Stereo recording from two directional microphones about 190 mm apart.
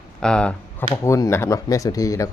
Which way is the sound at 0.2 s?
5° left (ahead or behind).